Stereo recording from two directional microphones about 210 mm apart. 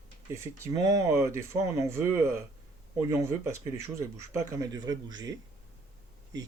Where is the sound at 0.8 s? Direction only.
15° right (ahead or behind).